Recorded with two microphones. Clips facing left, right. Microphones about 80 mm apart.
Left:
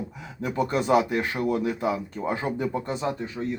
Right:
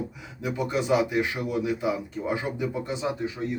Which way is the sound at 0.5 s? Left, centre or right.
Left.